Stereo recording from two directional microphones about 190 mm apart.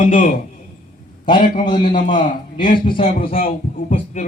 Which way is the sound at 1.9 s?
40° left (ahead or behind).